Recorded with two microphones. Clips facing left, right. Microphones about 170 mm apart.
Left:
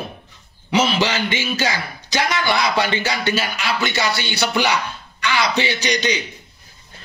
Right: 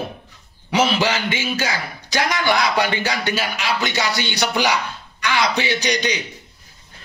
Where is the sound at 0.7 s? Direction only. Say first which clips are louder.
Even; 10° right (ahead or behind).